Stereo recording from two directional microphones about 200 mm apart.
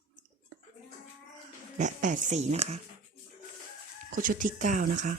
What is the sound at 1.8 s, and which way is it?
Speech, 40° right (ahead or behind).